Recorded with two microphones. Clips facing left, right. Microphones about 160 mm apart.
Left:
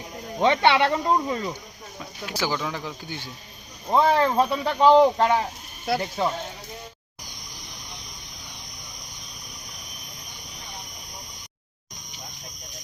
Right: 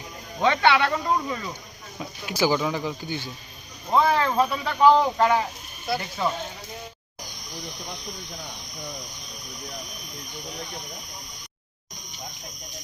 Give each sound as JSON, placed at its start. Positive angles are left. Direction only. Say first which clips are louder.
{"t": 0.3, "sound": "speech", "louder": "left 1 dB", "side_deg": 25}
{"t": 2.2, "sound": "speech", "louder": "right 5 dB", "side_deg": -10}
{"t": 3.9, "sound": "speech", "louder": "left 1 dB", "side_deg": 25}